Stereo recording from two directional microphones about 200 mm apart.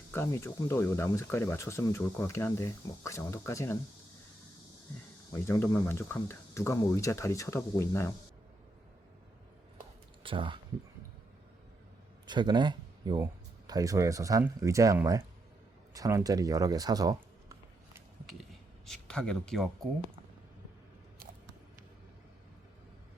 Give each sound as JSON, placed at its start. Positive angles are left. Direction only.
{"t": 0.1, "sound": "speech", "side_deg": 15}
{"t": 5.3, "sound": "speech", "side_deg": 15}
{"t": 10.2, "sound": "speech", "side_deg": -25}
{"t": 12.2, "sound": "speech", "side_deg": -20}
{"t": 18.9, "sound": "speech", "side_deg": 5}